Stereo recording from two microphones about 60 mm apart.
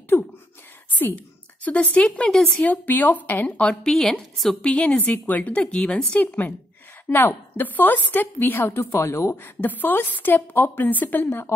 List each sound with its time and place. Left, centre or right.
0.1 s whispering: left
0.9 s a woman's voice: left
2.0 s a woman's voice: centre; by 3.4 s left
3.4 s a woman's voice: centre
3.9 s a woman's voice: centre
4.6 s a woman's voice: centre
6.1 s a woman's voice: left